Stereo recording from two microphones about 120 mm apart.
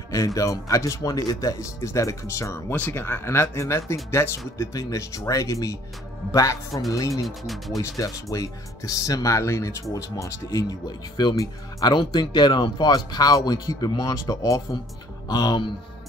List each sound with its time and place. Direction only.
0.1 s speech: 25° left (ahead or behind)
7.2 s speech: centre (ahead or behind)
7.8 s speech: 25° left (ahead or behind)